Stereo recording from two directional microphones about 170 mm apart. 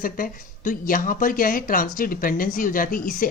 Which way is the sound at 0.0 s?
55° left (ahead or behind).